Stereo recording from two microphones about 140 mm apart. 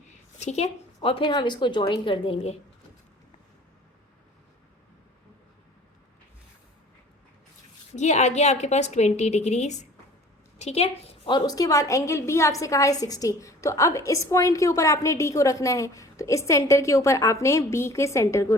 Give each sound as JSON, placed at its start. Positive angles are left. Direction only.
{"t": 0.3, "sound": "a woman's voice", "side_deg": 50}
{"t": 7.9, "sound": "a woman's voice", "side_deg": 55}